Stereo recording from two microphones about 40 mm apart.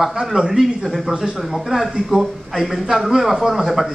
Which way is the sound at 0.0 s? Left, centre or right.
Centre.